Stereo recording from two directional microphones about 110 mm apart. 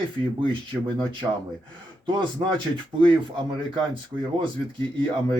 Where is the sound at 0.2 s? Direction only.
50° right (ahead or behind).